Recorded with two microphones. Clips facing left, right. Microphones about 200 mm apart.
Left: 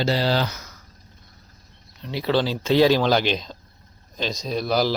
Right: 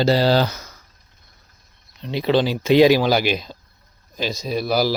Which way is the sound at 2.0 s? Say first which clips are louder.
Right 3 dB; 20° right (ahead or behind).